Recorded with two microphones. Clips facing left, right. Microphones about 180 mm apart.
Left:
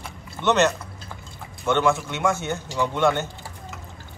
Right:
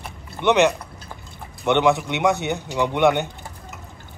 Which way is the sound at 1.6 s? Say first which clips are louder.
Right 3 dB; 20° right (ahead or behind).